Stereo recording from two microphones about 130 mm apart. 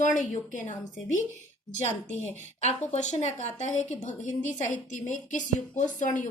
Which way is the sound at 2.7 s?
60° left (ahead or behind).